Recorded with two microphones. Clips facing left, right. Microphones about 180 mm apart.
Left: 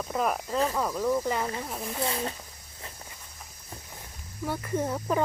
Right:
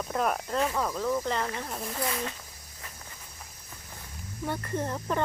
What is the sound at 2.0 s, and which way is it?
Speech, 30° left (ahead or behind).